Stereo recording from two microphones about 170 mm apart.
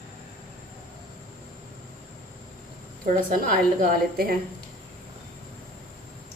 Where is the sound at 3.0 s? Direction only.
55° right (ahead or behind).